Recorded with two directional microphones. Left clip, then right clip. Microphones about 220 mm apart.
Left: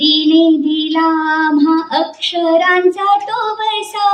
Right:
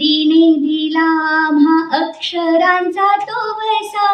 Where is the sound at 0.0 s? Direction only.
45° left (ahead or behind).